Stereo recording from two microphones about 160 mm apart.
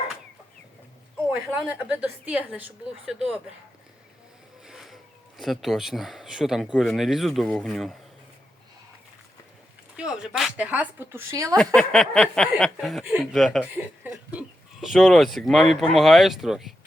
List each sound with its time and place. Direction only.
1.5 s a woman's voice: 10° right (ahead or behind)
4.6 s a sound: centre (ahead or behind)
5.4 s speech: centre (ahead or behind)
10.0 s a woman's voice: 5° right (ahead or behind)
11.5 s speech: 5° left (ahead or behind)